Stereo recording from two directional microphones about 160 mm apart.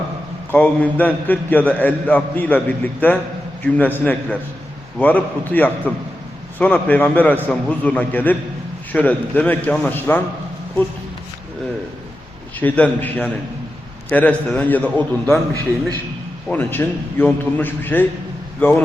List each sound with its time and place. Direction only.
0.5 s a man's voice: 10° left (ahead or behind)
12.5 s a man's voice: 10° left (ahead or behind)
16.5 s a man's voice: 10° left (ahead or behind)